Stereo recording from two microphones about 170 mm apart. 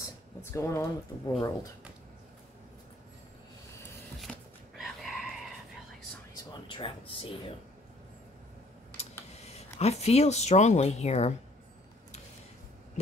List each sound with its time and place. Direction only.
0.0 s speech: 15° left (ahead or behind)
4.2 s a sound: centre (ahead or behind)
6.5 s speech: 30° left (ahead or behind)
9.3 s speech: 40° left (ahead or behind)